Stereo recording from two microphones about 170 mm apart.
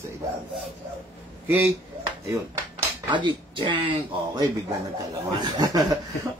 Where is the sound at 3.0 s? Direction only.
30° right (ahead or behind).